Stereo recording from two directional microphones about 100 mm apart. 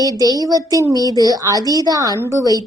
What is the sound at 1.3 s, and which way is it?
A woman's voice, 35° right (ahead or behind).